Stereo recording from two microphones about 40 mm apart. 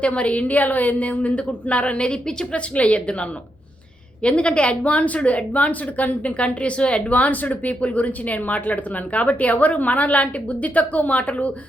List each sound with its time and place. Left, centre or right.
0.0 s speech: left